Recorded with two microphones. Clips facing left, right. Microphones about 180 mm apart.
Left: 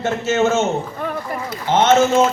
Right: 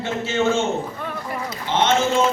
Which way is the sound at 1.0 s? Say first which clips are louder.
Left 3 dB; 45° left (ahead or behind).